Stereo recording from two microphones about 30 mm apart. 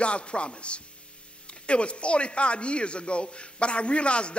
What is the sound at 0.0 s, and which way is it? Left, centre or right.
A man's voice, left.